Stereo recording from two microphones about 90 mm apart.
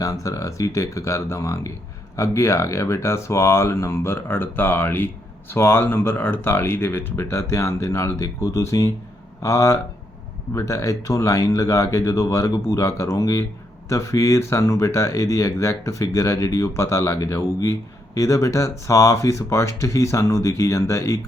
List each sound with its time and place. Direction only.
0.0 s speech: 40° left (ahead or behind)